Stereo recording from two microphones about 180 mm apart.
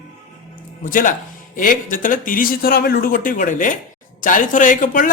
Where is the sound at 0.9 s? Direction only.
50° left (ahead or behind).